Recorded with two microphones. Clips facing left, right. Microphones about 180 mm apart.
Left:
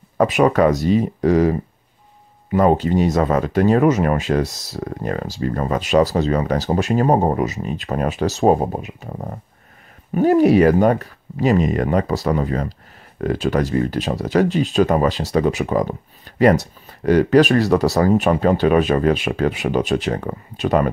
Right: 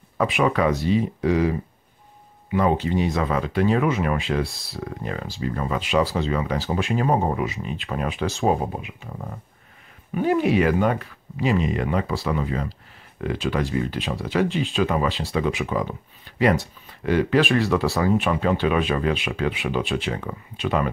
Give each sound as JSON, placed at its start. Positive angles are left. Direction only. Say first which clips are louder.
{"t": 0.2, "sound": "speech", "louder": "left 6 dB", "side_deg": 45}